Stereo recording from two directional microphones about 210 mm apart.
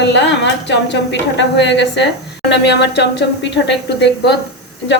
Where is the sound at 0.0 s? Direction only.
55° left (ahead or behind).